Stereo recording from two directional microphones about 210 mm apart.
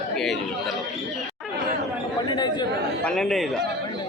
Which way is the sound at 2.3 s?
20° left (ahead or behind).